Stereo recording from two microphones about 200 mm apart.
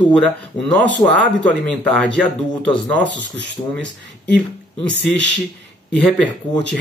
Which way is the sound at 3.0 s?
65° right (ahead or behind).